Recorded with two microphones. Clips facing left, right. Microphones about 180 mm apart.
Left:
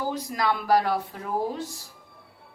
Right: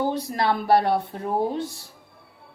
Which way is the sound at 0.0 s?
25° right (ahead or behind).